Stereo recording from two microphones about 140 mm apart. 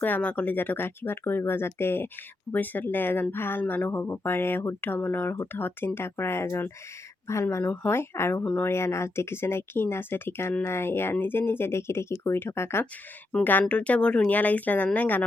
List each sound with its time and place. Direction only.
0.0 s speech: 10° left (ahead or behind)